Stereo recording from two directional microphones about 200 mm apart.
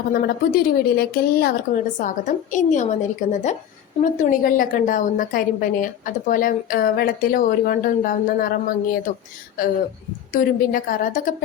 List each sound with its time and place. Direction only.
0.1 s a woman's voice: 50° left (ahead or behind)
9.6 s a woman's voice: 45° left (ahead or behind)